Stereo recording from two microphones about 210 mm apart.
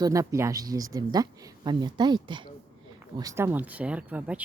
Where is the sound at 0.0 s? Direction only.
15° right (ahead or behind).